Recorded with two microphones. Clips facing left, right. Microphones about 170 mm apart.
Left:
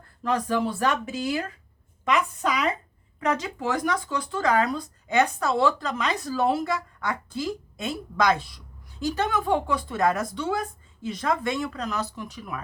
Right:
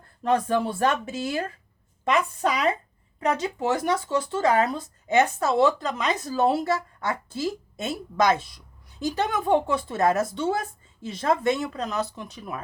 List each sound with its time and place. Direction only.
0.2 s speech: 25° right (ahead or behind)